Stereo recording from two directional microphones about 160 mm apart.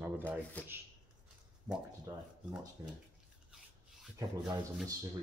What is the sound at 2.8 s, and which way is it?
Speech, 20° right (ahead or behind).